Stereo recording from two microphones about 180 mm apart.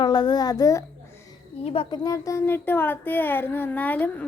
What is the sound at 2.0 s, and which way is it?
Child singing, 20° left (ahead or behind).